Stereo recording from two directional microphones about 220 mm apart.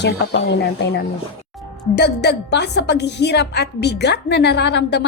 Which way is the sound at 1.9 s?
50° left (ahead or behind).